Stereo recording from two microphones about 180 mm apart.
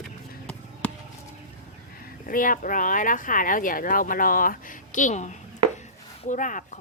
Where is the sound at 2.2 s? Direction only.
50° left (ahead or behind).